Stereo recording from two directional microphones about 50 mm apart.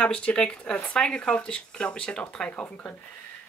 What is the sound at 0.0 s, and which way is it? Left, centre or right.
Speech, centre.